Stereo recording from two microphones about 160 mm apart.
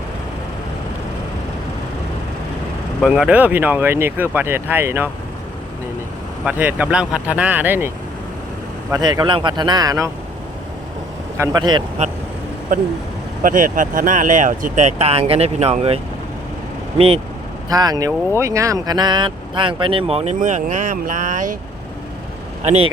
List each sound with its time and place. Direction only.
3.0 s speech: 5° right (ahead or behind)
6.4 s speech: 10° right (ahead or behind)
8.9 s speech: 25° right (ahead or behind)
11.3 s speech: 25° right (ahead or behind)
12.0 s speech: 45° right (ahead or behind)
12.7 s speech: 55° right (ahead or behind)
17.7 s speech: 25° right (ahead or behind); by 21.5 s 50° right (ahead or behind)
22.6 s speech: 40° right (ahead or behind)